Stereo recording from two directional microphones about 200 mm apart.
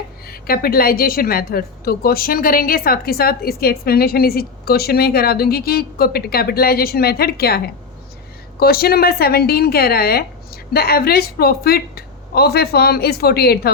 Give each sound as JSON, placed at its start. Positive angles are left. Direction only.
{"t": 0.3, "sound": "a woman's voice", "side_deg": 50}